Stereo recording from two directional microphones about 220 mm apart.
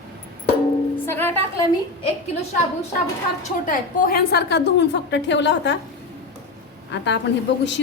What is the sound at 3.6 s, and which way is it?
A woman's voice, 40° left (ahead or behind).